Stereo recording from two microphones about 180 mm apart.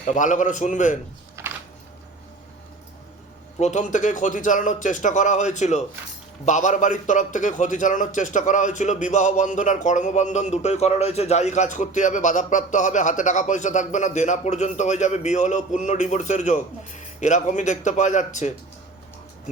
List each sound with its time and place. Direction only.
0.1 s a man's voice: 45° left (ahead or behind)
1.4 s a sound: 15° right (ahead or behind)
3.6 s a man's voice: 40° left (ahead or behind)